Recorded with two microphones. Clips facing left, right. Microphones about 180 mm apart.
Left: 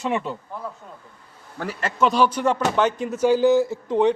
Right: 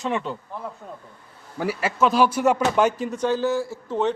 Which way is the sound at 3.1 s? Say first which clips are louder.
Left 5 dB; 10° left (ahead or behind).